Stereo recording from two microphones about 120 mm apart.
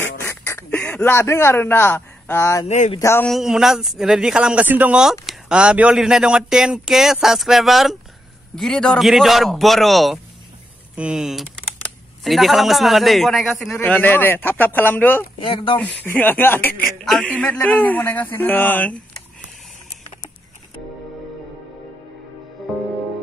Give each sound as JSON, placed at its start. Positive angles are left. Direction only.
{"t": 0.0, "sound": "quack", "side_deg": 20}
{"t": 1.1, "sound": "a man's voice", "side_deg": 20}
{"t": 3.3, "sound": "speech", "side_deg": -5}
{"t": 13.7, "sound": "speech", "side_deg": 15}
{"t": 15.4, "sound": "speech", "side_deg": 40}
{"t": 15.8, "sound": "speech", "side_deg": 15}
{"t": 17.0, "sound": "speech", "side_deg": 0}